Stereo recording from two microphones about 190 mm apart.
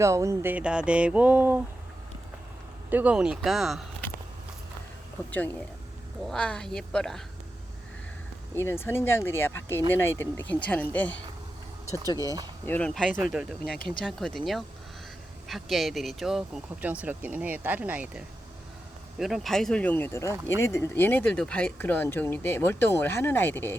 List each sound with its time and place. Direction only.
0.0 s a sound: 15° right (ahead or behind)
2.9 s speech: 5° right (ahead or behind)
5.3 s speech: 10° left (ahead or behind)
8.5 s speech: 15° left (ahead or behind)
12.2 s speech: 20° right (ahead or behind)
12.6 s speech: 10° left (ahead or behind)
16.8 s a sound: 10° right (ahead or behind)
19.2 s speech: centre (ahead or behind)